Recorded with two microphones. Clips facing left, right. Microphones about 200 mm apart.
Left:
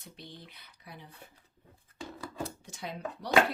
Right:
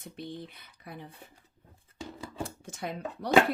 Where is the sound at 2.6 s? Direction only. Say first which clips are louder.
Right 3 dB; 50° right (ahead or behind).